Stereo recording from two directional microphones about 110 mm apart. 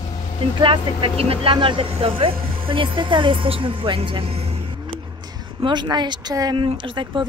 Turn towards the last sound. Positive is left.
turn(degrees=-50)  # may be behind; listen again after turning